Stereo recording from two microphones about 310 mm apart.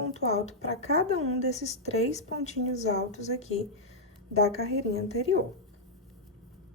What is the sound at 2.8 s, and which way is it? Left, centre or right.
Speech, left.